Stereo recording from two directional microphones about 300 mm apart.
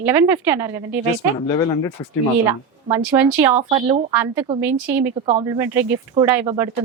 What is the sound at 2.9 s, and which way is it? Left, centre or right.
Speech, centre.